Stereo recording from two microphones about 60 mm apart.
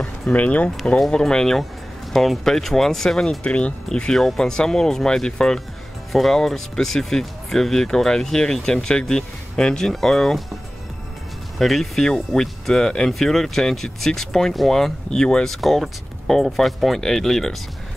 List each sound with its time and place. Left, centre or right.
0.3 s speech: left
0.9 s speech: centre
3.4 s speech: left
4.1 s speech: centre
11.5 s speech: centre